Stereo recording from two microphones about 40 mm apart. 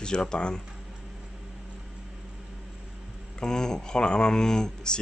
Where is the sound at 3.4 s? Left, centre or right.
Centre.